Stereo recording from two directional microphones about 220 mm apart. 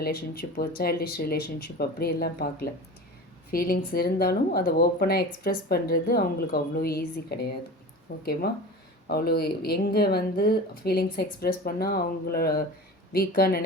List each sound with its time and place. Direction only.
0.0 s speech: 45° left (ahead or behind)